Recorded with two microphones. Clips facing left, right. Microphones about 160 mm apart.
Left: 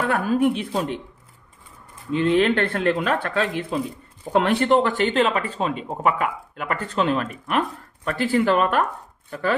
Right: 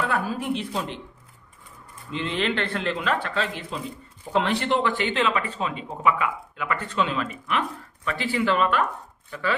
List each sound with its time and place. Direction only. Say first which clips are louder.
0.0 s speech: left 7 dB; 55° left (ahead or behind)
2.1 s speech: left 8 dB; 50° left (ahead or behind)